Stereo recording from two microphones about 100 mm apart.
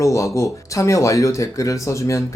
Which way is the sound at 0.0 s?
30° left (ahead or behind).